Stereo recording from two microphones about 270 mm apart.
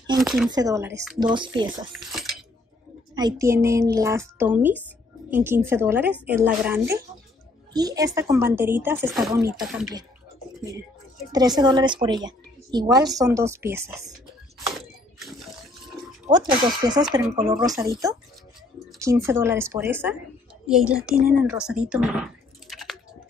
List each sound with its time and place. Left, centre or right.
0.2 s speech: centre
0.5 s a woman's voice: centre
2.0 s speech: centre
3.2 s a woman's voice: centre
11.3 s a woman's voice: centre
16.3 s a woman's voice: centre
18.9 s a woman's voice: centre
22.7 s chewing: centre